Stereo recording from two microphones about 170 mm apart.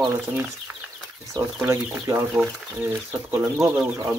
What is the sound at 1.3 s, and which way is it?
Speech, 15° right (ahead or behind).